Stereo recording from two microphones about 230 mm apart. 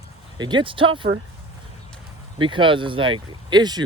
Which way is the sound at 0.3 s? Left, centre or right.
Centre.